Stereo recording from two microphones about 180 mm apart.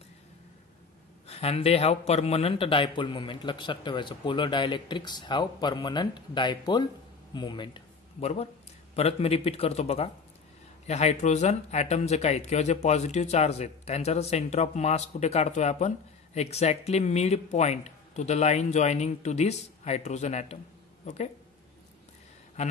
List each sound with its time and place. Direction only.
1.2 s a woman's voice: 35° left (ahead or behind)